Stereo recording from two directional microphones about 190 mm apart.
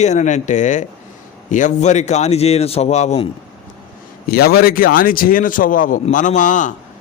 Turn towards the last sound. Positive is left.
turn(degrees=40)  # may be behind; listen again after turning